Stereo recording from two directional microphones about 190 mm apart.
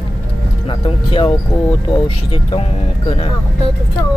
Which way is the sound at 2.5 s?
30° left (ahead or behind).